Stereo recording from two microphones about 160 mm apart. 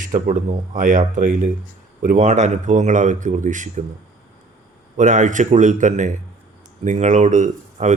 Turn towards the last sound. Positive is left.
turn(degrees=-50)  # may be behind; listen again after turning